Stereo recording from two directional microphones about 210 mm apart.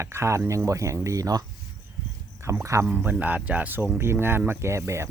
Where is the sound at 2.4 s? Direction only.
15° right (ahead or behind).